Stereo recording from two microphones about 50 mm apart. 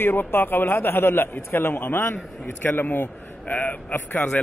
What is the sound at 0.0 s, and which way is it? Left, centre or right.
A man's voice, left.